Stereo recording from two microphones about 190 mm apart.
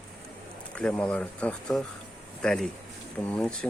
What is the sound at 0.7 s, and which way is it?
Speech, 5° left (ahead or behind).